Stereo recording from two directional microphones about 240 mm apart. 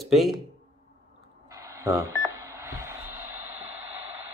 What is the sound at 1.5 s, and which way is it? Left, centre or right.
Telephone dialing, centre.